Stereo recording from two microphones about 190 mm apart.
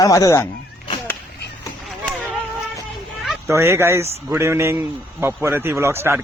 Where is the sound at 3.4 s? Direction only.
15° right (ahead or behind).